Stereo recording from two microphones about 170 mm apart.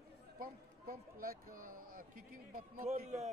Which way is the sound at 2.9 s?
40° right (ahead or behind).